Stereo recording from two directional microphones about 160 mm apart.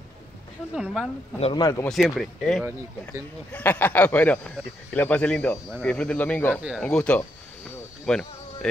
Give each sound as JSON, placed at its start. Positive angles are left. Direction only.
{"t": 0.7, "sound": "speech", "side_deg": -5}
{"t": 1.6, "sound": "speech", "side_deg": 20}
{"t": 1.9, "sound": "a man's voice", "side_deg": 0}
{"t": 6.5, "sound": "speech", "side_deg": -5}
{"t": 6.8, "sound": "speech", "side_deg": 5}